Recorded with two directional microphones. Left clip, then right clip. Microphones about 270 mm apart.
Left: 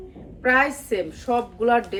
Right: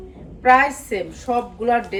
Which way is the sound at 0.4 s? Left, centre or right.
Centre.